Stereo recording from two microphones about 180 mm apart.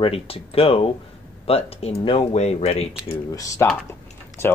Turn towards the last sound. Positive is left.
turn(degrees=15)  # may be behind; listen again after turning